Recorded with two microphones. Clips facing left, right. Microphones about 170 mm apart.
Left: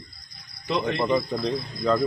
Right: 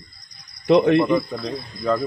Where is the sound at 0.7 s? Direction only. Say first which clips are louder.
Right 11 dB; 65° right (ahead or behind).